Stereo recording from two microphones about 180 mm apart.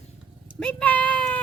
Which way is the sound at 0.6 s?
10° left (ahead or behind).